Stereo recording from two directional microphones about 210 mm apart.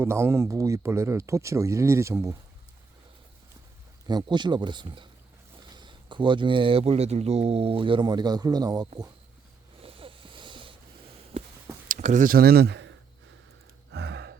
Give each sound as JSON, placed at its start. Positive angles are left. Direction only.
{"t": 0.0, "sound": "speech", "side_deg": -10}
{"t": 4.0, "sound": "speech", "side_deg": -20}
{"t": 9.8, "sound": "a sound", "side_deg": -25}
{"t": 11.9, "sound": "speech", "side_deg": -35}
{"t": 13.9, "sound": "gasp", "side_deg": -55}